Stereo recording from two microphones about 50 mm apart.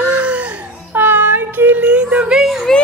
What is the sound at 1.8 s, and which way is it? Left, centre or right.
Music, right.